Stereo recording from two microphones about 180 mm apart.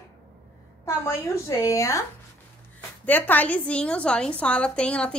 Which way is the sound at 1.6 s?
15° left (ahead or behind).